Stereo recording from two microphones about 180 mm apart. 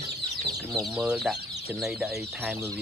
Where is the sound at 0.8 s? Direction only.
5° right (ahead or behind).